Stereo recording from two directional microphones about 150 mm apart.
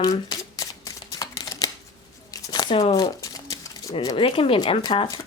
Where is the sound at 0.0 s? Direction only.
25° left (ahead or behind).